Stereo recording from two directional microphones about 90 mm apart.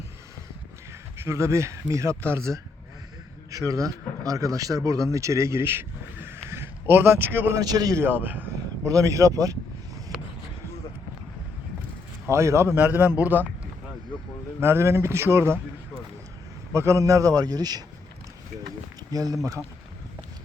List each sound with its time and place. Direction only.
1.2 s speech: 30° right (ahead or behind)
7.6 s a man's voice: 45° right (ahead or behind)
7.9 s a man's voice: 25° right (ahead or behind)
8.8 s speech: 35° right (ahead or behind)
10.1 s a sound: 40° right (ahead or behind)
12.3 s a man's voice: 30° right (ahead or behind)
14.6 s a man's voice: 30° right (ahead or behind)
16.7 s speech: 30° right (ahead or behind); by 17.8 s 45° right (ahead or behind)
19.1 s a man's voice: 45° right (ahead or behind)